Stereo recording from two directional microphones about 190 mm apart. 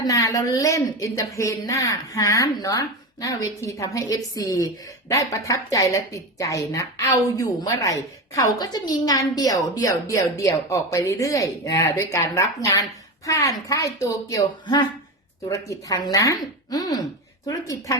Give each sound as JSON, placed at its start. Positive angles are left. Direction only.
{"t": 0.0, "sound": "a woman's voice", "side_deg": 20}